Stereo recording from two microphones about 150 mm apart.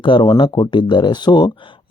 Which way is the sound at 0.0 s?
35° left (ahead or behind).